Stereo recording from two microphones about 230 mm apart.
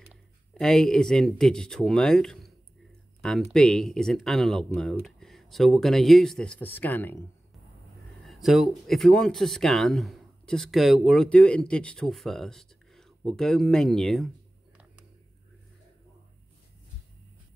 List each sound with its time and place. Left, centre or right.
0.1 s speech: centre